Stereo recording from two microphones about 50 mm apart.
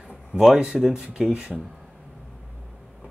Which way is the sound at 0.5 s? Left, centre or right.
Centre.